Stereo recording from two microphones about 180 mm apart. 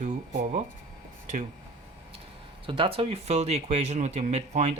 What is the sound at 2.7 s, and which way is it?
Speech, 30° right (ahead or behind).